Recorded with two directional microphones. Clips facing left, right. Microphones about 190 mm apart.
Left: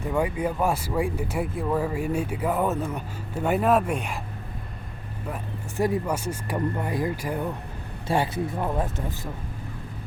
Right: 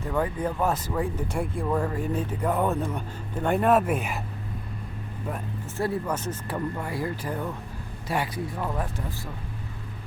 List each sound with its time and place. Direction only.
0.0 s speech: 10° left (ahead or behind); by 4.2 s 5° right (ahead or behind)
5.7 s speech: 15° left (ahead or behind)
8.0 s speech: 30° left (ahead or behind)